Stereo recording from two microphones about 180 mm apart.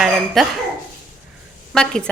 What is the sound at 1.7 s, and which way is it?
Speech, 5° left (ahead or behind).